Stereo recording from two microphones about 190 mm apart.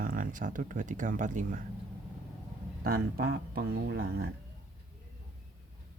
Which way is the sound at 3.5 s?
55° right (ahead or behind).